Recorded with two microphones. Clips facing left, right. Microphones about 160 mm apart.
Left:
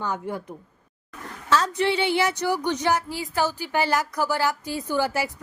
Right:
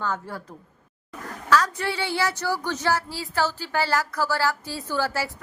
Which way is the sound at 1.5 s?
25° left (ahead or behind).